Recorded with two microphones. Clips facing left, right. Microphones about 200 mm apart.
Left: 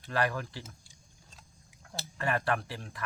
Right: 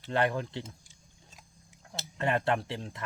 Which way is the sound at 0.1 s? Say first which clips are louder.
Right 3 dB; 20° right (ahead or behind).